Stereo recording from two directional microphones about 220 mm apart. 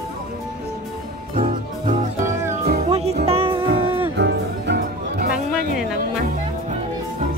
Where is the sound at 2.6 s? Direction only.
35° right (ahead or behind).